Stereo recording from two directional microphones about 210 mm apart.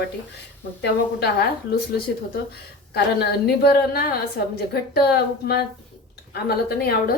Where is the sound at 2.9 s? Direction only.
50° left (ahead or behind).